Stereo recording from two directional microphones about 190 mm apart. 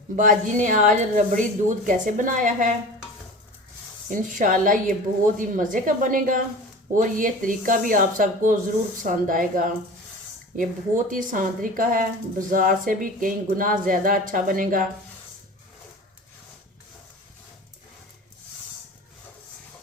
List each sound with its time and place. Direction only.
0.2 s speech: 45° right (ahead or behind)
4.1 s speech: 45° right (ahead or behind)